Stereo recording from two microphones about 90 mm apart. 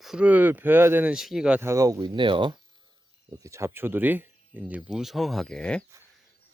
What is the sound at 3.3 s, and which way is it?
Speech, 35° right (ahead or behind).